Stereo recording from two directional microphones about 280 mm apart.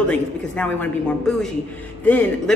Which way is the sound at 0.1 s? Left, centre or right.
Centre.